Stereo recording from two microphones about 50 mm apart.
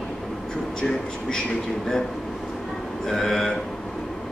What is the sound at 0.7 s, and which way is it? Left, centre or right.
Speech, centre.